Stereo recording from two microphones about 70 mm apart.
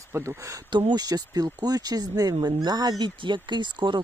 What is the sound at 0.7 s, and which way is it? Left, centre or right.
Speech, right.